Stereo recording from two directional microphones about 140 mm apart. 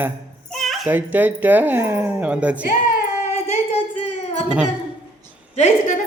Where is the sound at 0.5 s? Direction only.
Centre (ahead or behind).